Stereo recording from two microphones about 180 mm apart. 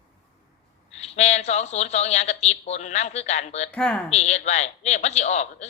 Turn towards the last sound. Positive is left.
turn(degrees=40)  # may be behind; listen again after turning